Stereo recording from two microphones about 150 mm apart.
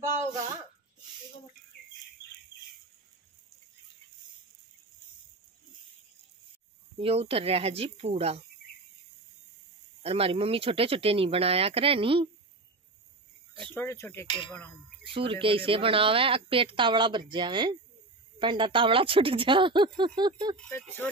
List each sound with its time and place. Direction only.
0.0 s a sound: 15° right (ahead or behind)
7.0 s a woman's voice: 40° right (ahead or behind)
10.0 s a woman's voice: 40° right (ahead or behind)
13.7 s speech: 15° left (ahead or behind)
14.2 s a sound: 30° left (ahead or behind)
15.1 s a woman's voice: 35° right (ahead or behind)